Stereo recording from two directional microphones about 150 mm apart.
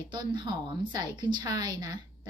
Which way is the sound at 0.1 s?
30° right (ahead or behind).